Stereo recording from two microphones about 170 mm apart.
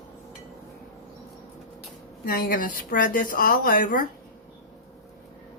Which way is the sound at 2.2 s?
60° left (ahead or behind).